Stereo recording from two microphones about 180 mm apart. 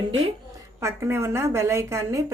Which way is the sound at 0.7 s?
15° right (ahead or behind).